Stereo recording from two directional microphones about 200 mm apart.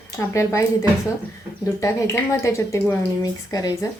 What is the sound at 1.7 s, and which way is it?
Speech, 15° left (ahead or behind).